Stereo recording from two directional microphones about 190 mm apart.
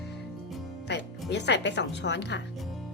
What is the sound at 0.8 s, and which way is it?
Speech, 65° left (ahead or behind).